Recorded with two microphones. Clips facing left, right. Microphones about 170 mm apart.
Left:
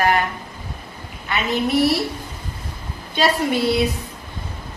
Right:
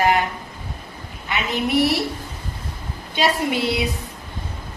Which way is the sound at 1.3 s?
15° right (ahead or behind).